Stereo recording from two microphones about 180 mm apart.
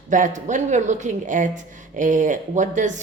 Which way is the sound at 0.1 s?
45° right (ahead or behind).